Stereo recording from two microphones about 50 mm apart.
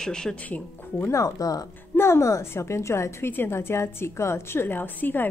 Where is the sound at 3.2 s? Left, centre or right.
Left.